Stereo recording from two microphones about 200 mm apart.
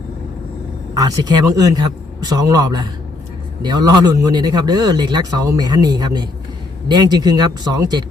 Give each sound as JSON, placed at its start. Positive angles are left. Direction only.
{"t": 0.9, "sound": "speech", "side_deg": -20}